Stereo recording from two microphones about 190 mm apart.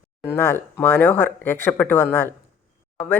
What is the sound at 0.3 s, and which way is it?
Speech, 10° left (ahead or behind).